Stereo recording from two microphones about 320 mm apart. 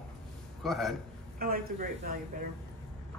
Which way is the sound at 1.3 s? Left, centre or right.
Right.